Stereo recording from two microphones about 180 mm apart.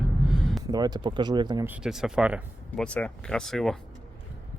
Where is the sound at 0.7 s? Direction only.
20° right (ahead or behind).